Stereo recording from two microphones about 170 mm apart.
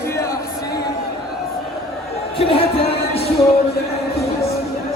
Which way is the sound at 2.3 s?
30° left (ahead or behind).